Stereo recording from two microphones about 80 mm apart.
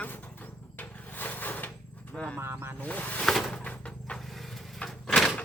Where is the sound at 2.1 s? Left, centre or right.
Centre.